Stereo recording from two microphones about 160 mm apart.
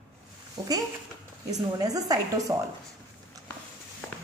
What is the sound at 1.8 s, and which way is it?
Speech, 25° right (ahead or behind).